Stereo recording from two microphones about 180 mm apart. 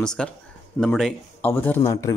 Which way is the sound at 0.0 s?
5° left (ahead or behind).